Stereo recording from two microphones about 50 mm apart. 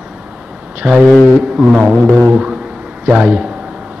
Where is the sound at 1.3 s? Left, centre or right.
Centre.